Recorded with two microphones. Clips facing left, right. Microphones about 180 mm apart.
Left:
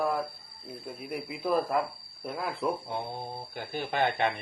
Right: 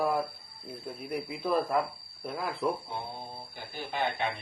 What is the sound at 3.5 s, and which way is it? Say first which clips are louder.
Speech: left 4 dB; 60° left (ahead or behind).